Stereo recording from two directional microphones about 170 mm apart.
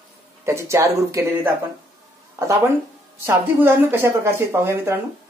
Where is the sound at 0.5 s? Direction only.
15° right (ahead or behind).